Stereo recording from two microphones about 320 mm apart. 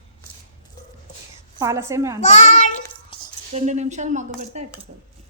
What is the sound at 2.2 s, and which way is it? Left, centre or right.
Speech, left.